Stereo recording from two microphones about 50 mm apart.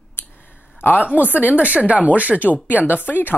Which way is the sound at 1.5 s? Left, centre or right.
Right.